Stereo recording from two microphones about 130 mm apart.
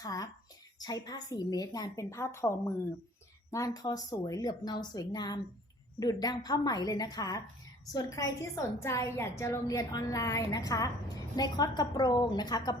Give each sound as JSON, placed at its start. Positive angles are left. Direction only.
{"t": 0.0, "sound": "a woman's voice", "side_deg": 30}